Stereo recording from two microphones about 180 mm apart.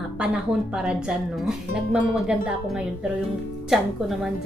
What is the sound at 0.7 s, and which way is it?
Music, 5° right (ahead or behind).